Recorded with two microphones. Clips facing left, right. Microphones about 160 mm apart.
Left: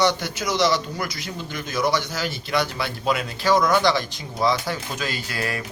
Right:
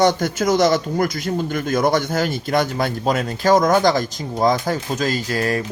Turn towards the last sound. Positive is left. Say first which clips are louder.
# right 8 dB
turn(degrees=-40)  # may be behind; listen again after turning